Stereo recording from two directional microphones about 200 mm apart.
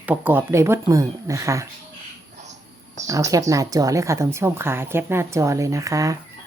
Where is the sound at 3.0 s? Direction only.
15° right (ahead or behind).